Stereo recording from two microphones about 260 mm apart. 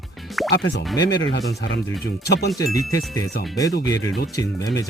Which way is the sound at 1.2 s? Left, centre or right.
Left.